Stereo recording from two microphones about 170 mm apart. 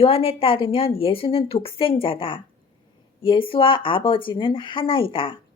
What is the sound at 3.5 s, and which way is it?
A woman's voice, 30° left (ahead or behind).